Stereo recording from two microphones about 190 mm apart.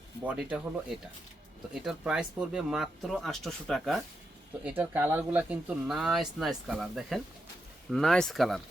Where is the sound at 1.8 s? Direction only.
5° right (ahead or behind).